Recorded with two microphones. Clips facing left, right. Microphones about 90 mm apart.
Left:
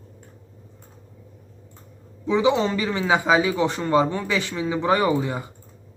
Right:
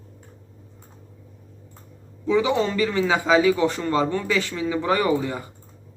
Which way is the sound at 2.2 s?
20° left (ahead or behind).